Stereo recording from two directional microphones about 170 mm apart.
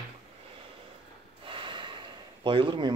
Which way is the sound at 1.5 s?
30° right (ahead or behind).